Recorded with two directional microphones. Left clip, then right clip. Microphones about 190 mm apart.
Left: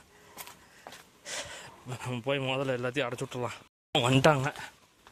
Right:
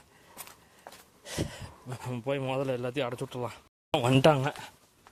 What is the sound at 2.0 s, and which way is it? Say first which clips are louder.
Speech: left 1 dB; 5° right (ahead or behind).